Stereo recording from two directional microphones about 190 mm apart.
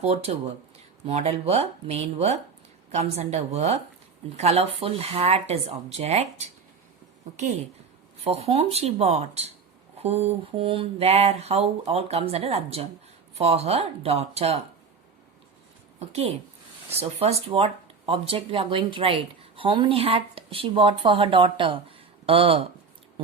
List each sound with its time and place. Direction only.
0.0 s speech: 35° right (ahead or behind)
8.2 s speech: 30° right (ahead or behind)
16.0 s speech: 35° right (ahead or behind)